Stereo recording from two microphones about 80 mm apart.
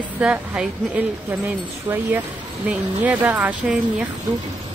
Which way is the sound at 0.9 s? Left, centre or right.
Right.